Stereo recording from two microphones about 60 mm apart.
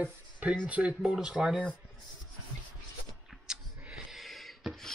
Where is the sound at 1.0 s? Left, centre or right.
Centre.